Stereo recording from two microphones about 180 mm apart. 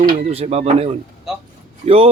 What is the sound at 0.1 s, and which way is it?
A man's voice, 35° right (ahead or behind).